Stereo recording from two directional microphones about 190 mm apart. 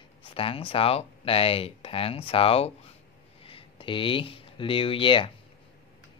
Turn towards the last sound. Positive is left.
turn(degrees=25)  # may be behind; listen again after turning